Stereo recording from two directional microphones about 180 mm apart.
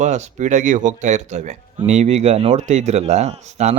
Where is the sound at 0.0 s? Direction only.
40° right (ahead or behind).